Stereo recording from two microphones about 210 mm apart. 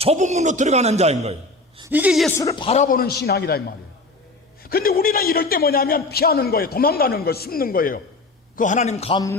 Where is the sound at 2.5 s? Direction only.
30° left (ahead or behind).